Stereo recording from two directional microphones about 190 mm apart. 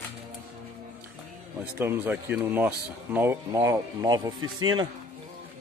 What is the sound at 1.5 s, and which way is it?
Speech, 10° right (ahead or behind).